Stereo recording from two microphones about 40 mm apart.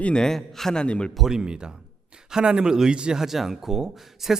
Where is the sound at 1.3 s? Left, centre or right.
Centre.